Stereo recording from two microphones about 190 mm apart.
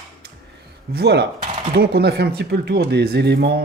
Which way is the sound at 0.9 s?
60° right (ahead or behind).